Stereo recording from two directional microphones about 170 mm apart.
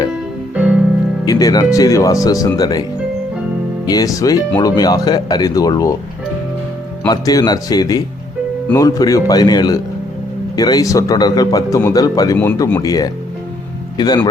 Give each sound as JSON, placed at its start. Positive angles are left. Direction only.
{"t": 1.2, "sound": "speech", "side_deg": 20}
{"t": 3.8, "sound": "speech", "side_deg": 20}
{"t": 7.1, "sound": "speech", "side_deg": 25}